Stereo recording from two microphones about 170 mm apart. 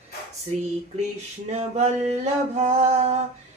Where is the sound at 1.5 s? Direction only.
40° right (ahead or behind).